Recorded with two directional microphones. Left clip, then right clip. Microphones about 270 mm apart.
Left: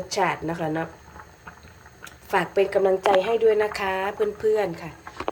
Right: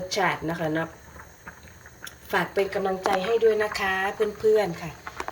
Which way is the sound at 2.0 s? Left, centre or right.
Centre.